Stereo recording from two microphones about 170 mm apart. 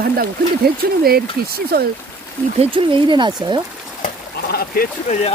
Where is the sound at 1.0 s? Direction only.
65° right (ahead or behind).